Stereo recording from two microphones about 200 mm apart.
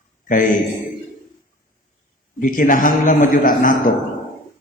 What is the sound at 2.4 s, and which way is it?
A man's voice, 45° left (ahead or behind).